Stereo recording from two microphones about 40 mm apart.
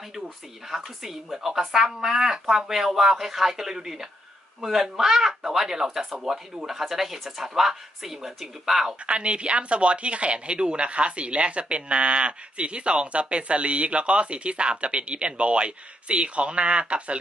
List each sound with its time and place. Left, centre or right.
0.7 s speech: centre
9.0 s speech: right